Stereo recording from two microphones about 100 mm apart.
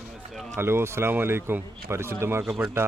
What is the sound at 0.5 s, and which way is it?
A man's voice, 25° right (ahead or behind).